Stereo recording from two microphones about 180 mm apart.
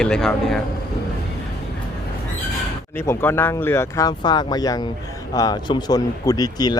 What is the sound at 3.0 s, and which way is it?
Speech, 10° left (ahead or behind).